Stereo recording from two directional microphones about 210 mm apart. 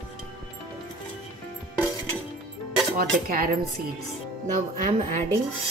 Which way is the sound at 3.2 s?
45° right (ahead or behind).